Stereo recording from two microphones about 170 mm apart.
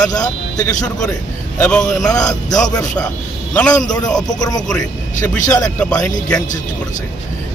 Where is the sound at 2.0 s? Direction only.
20° left (ahead or behind).